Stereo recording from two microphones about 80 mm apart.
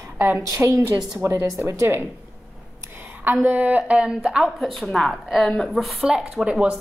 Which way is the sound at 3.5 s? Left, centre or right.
Centre.